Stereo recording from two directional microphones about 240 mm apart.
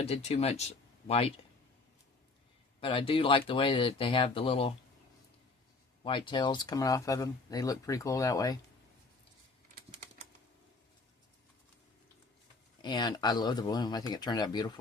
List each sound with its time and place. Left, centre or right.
0.0 s speech: left
2.8 s speech: left
6.0 s speech: centre
12.8 s speech: centre